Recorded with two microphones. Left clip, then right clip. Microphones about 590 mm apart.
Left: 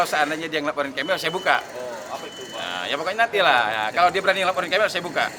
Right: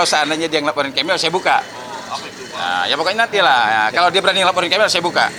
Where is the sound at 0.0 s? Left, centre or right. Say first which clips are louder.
Right 6 dB; right.